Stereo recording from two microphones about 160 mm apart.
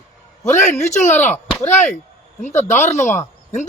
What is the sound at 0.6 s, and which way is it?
Speech, 45° left (ahead or behind).